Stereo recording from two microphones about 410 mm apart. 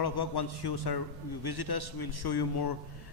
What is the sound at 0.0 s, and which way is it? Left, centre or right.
A man's voice, left.